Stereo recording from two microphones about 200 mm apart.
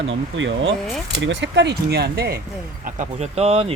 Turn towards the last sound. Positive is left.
turn(degrees=-30)  # may be behind; listen again after turning